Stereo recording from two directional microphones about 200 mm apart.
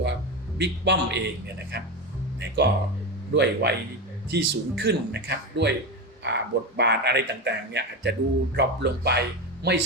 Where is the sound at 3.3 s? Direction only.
55° right (ahead or behind).